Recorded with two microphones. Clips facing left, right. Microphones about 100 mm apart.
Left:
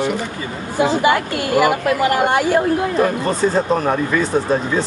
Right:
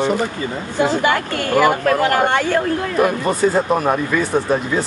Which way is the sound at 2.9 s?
15° right (ahead or behind).